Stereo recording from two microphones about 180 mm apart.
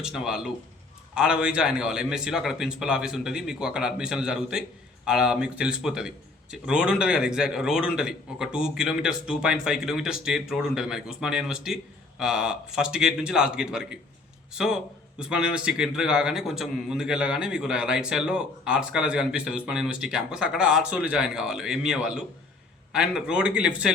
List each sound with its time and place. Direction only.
0.0 s a man's voice: 5° right (ahead or behind)